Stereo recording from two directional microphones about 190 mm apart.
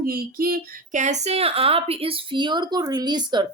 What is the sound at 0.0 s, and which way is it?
A woman's voice, 50° right (ahead or behind).